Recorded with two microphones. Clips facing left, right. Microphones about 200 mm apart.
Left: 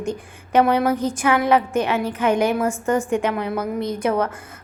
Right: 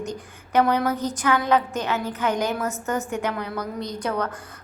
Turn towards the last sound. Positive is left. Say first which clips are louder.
# left 6 dB
turn(degrees=25)  # may be behind; listen again after turning